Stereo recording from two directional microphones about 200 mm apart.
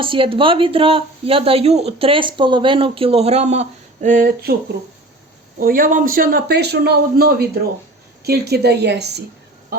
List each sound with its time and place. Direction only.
0.0 s speech: 25° right (ahead or behind); by 4.5 s 45° right (ahead or behind)
5.5 s a man's voice: 45° right (ahead or behind)